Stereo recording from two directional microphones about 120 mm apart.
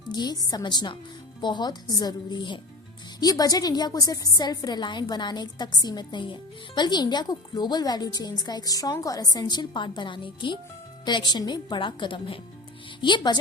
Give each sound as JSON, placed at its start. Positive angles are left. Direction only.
{"t": 0.1, "sound": "a woman's voice", "side_deg": 35}